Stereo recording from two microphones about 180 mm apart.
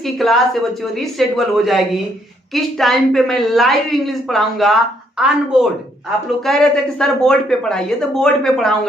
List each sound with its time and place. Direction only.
0.2 s a woman's voice: centre (ahead or behind)